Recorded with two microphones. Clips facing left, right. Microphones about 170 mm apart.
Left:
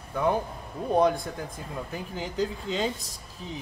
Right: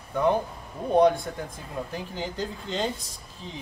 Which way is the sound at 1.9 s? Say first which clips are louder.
Left 5 dB; centre (ahead or behind).